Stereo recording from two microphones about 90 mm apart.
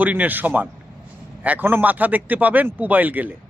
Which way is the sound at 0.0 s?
20° right (ahead or behind).